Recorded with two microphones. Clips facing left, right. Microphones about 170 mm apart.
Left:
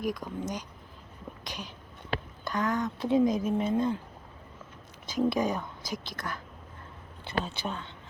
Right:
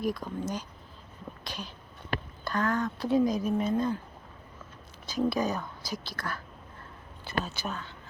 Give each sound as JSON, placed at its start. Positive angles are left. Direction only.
{"t": 0.0, "sound": "speech", "side_deg": 15}
{"t": 5.3, "sound": "speech", "side_deg": 20}